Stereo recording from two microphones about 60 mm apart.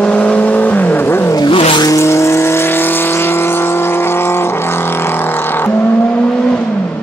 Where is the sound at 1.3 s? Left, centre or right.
Left.